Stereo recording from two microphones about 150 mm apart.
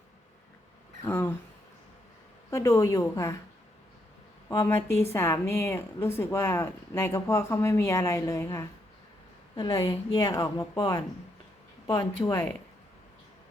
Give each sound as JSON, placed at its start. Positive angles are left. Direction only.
{"t": 1.0, "sound": "speech", "side_deg": 15}
{"t": 2.5, "sound": "a woman's voice", "side_deg": 20}
{"t": 4.4, "sound": "a woman's voice", "side_deg": 20}